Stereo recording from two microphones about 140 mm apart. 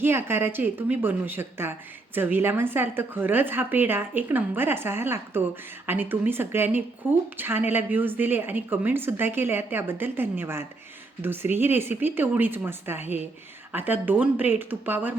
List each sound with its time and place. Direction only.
0.0 s a woman's voice: 15° right (ahead or behind)